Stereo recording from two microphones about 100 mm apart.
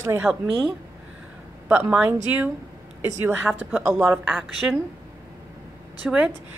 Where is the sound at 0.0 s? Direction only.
25° right (ahead or behind).